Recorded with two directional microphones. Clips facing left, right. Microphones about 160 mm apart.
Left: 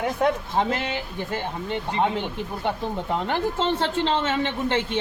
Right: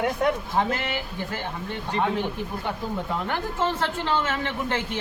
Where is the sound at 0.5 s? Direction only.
20° left (ahead or behind).